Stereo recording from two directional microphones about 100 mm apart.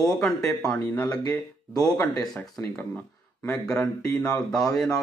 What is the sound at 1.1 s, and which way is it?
Speech, 15° left (ahead or behind).